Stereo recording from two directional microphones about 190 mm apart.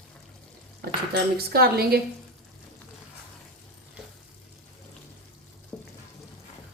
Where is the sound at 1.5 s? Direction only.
55° right (ahead or behind).